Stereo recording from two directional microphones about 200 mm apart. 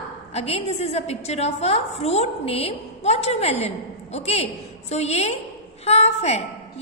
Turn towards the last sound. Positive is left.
turn(degrees=30)  # may be behind; listen again after turning